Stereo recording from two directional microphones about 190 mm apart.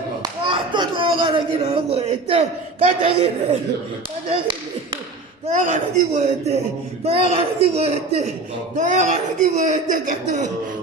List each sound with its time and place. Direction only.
0.2 s speech: 25° right (ahead or behind)
5.6 s a man's voice: 40° right (ahead or behind)